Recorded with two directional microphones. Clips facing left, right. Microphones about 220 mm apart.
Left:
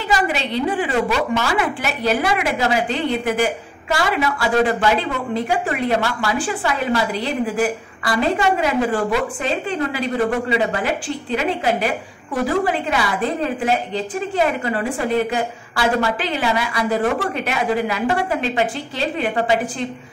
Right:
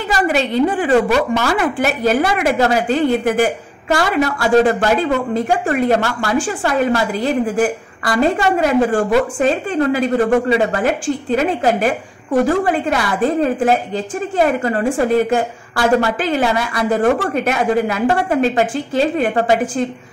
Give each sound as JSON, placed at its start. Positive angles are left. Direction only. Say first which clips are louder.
{"t": 0.1, "sound": "speech", "louder": "right 4 dB", "side_deg": -45}